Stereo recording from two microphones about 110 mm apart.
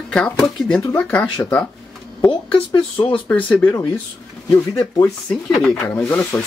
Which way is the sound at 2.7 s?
50° left (ahead or behind).